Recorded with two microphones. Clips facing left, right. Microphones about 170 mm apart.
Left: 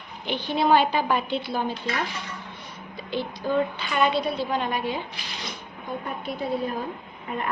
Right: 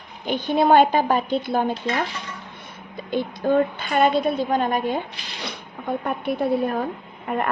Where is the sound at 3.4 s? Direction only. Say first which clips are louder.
Right 5 dB; 50° right (ahead or behind).